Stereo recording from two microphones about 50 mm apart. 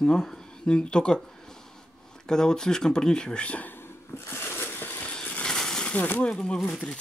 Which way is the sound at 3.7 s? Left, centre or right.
Left.